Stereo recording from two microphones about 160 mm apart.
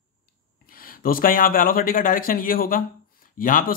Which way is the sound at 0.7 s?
65° left (ahead or behind).